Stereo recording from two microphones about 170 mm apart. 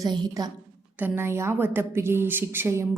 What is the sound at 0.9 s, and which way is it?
A woman's voice, 10° right (ahead or behind).